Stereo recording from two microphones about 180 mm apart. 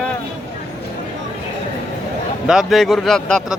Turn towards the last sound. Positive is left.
turn(degrees=5)  # may be behind; listen again after turning